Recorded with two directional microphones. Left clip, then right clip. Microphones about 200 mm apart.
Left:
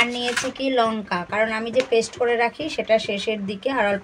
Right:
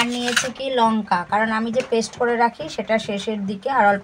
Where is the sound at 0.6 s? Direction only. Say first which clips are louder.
Even; 10° right (ahead or behind).